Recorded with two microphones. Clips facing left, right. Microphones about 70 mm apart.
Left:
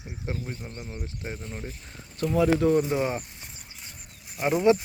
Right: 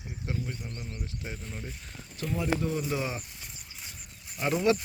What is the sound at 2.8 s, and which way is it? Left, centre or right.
Speech, left.